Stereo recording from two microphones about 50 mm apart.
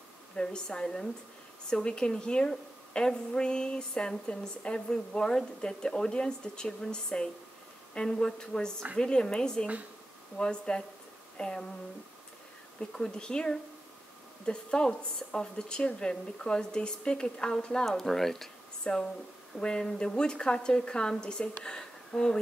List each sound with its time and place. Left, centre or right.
0.4 s a woman's voice: centre
12.9 s a woman's voice: centre
17.8 s speech: centre
18.9 s a woman's voice: centre